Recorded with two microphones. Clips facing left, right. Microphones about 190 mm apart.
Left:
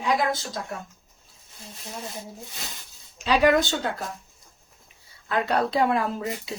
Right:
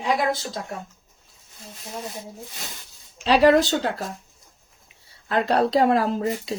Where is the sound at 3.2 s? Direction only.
35° right (ahead or behind).